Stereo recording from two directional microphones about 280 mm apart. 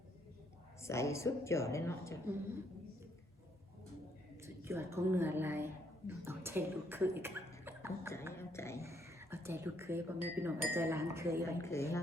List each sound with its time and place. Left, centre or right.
0.8 s a woman's voice: centre
4.4 s a woman's voice: centre
8.3 s a woman's voice: centre
8.8 s speech: centre
11.6 s a woman's voice: centre